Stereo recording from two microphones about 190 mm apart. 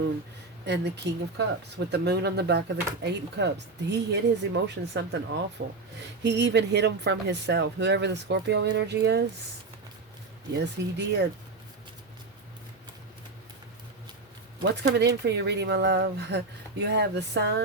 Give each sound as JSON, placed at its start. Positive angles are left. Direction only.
{"t": 0.6, "sound": "speech", "side_deg": -65}
{"t": 10.6, "sound": "speech", "side_deg": -65}
{"t": 14.6, "sound": "speech", "side_deg": -60}